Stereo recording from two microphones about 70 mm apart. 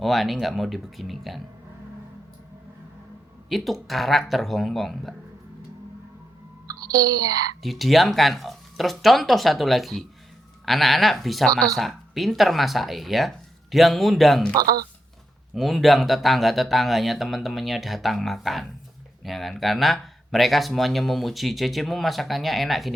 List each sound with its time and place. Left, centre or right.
0.0 s speech: centre
3.5 s speech: centre
6.7 s a child's voice: right
7.6 s speech: centre
14.5 s speech: right
15.5 s speech: centre